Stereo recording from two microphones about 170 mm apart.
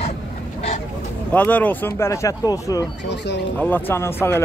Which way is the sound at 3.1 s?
90° left.